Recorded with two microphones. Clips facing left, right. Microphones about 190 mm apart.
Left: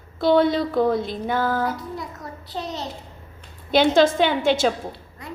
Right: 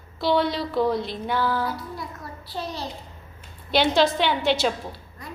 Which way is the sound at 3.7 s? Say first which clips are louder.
Left 4 dB; 50° left (ahead or behind).